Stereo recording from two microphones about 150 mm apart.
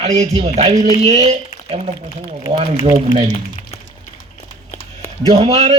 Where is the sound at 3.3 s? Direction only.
45° left (ahead or behind).